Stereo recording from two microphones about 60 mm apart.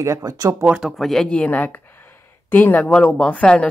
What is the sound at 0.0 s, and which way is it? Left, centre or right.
Speech, right.